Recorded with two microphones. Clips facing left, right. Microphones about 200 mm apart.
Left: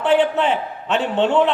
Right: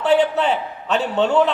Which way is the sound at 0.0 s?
40° right (ahead or behind).